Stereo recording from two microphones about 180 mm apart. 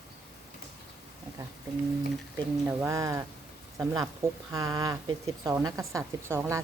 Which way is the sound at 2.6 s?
15° right (ahead or behind).